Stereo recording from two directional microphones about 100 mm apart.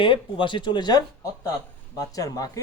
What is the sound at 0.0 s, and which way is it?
A man's voice, 55° left (ahead or behind).